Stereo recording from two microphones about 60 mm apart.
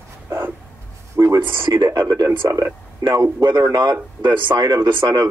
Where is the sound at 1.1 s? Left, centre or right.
Right.